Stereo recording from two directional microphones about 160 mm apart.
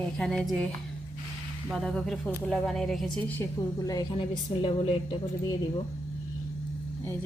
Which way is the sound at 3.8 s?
25° left (ahead or behind).